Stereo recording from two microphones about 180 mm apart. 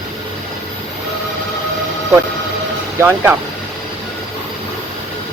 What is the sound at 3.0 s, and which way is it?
Speech, 10° right (ahead or behind).